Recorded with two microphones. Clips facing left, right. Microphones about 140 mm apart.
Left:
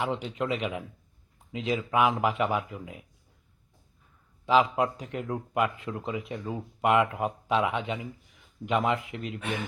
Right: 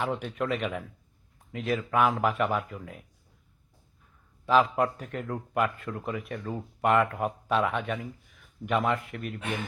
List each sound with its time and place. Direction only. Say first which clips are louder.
0.0 s speech: even; 15° left (ahead or behind)
4.4 s speech: even; 15° left (ahead or behind)